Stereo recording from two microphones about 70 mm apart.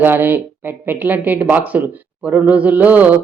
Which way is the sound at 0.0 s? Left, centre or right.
Right.